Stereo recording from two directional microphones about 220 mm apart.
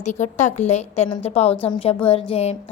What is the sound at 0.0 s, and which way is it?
A woman's voice, 35° left (ahead or behind).